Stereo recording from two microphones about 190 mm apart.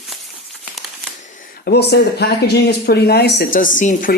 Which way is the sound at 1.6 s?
60° left (ahead or behind).